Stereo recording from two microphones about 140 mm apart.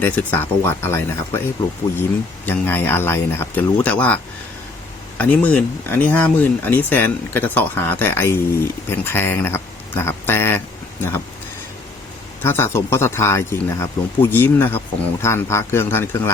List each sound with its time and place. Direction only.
0.0 s speech: 10° left (ahead or behind)
2.5 s speech: 15° left (ahead or behind)
12.4 s speech: 15° left (ahead or behind)